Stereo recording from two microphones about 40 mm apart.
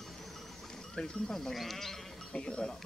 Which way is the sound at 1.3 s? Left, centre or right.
Centre.